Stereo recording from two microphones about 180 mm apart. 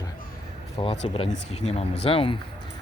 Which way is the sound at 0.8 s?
30° left (ahead or behind).